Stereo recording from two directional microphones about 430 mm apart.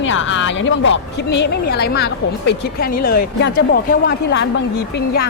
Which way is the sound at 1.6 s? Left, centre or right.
Left.